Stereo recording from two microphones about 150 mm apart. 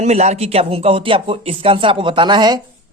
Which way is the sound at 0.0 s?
45° right (ahead or behind).